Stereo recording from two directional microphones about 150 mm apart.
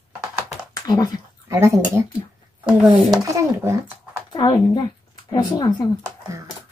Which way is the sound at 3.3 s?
20° right (ahead or behind).